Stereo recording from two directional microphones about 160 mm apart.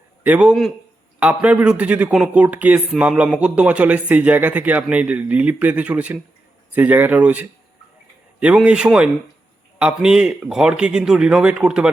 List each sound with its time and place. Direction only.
0.2 s speech: 10° right (ahead or behind)